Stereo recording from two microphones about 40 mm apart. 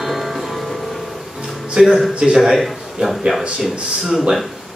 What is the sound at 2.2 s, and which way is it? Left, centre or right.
Speech, centre.